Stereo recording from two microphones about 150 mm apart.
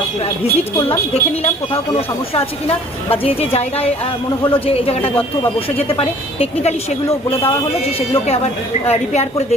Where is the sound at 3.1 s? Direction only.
40° left (ahead or behind).